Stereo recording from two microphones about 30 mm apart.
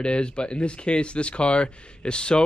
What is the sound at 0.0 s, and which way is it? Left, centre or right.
Speech, left.